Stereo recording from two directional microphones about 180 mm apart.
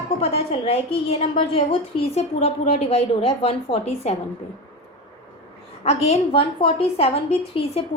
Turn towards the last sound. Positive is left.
turn(degrees=35)  # may be behind; listen again after turning